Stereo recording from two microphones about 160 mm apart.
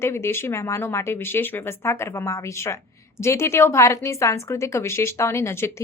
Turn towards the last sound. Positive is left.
turn(degrees=15)  # may be behind; listen again after turning